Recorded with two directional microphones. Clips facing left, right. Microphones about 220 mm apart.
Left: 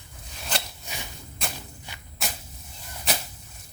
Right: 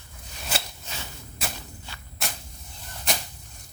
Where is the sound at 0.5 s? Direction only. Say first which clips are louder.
Even; 10° right (ahead or behind).